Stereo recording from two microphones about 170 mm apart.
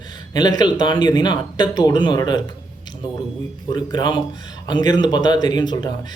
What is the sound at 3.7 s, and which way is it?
A man's voice, 25° left (ahead or behind).